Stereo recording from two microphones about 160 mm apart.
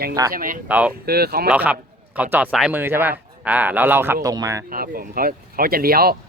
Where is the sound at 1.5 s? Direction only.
10° right (ahead or behind).